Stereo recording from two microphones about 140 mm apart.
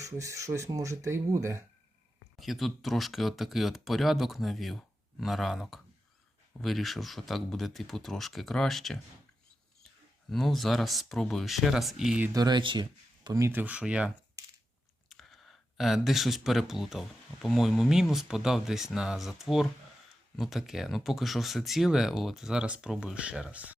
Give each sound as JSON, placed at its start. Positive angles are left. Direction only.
{"t": 0.0, "sound": "speech", "side_deg": -20}
{"t": 2.4, "sound": "speech", "side_deg": 0}
{"t": 10.2, "sound": "speech", "side_deg": 0}
{"t": 12.3, "sound": "speech", "side_deg": -30}
{"t": 13.4, "sound": "speech", "side_deg": -15}
{"t": 15.1, "sound": "speech", "side_deg": 0}